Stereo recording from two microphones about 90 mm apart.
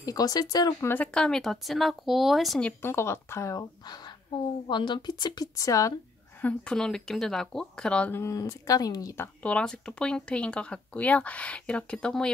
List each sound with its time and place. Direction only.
0.0 s speech: 45° left (ahead or behind)
0.7 s speech: 20° left (ahead or behind); by 2.6 s centre (ahead or behind)
2.8 s speech: 30° left (ahead or behind)
3.8 s speech: 50° left (ahead or behind)
6.4 s speech: 10° left (ahead or behind)
8.1 s speech: 35° left (ahead or behind)
9.4 s speech: 10° left (ahead or behind)